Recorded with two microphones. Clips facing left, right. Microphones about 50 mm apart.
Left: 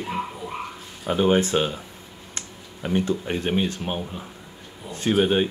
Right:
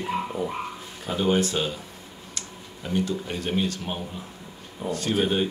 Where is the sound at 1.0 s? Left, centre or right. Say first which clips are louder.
Left 3 dB; left.